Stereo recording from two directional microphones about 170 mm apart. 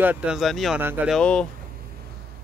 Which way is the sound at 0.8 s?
10° right (ahead or behind).